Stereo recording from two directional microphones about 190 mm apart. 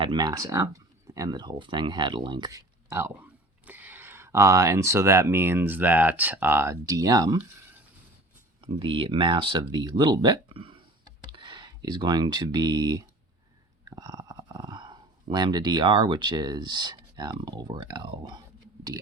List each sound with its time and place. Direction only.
0.0 s speech: 25° right (ahead or behind)
8.6 s speech: 25° right (ahead or behind)